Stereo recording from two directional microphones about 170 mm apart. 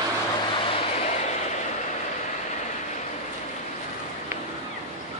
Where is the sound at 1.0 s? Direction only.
40° left (ahead or behind).